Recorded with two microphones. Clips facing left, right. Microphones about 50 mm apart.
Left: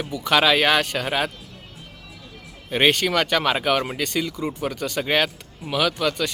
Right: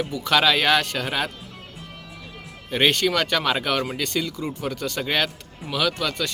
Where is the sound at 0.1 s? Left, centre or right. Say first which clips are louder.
Left 2 dB; left.